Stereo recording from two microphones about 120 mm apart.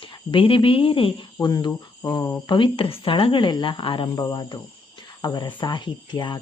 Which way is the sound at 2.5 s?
45° left (ahead or behind).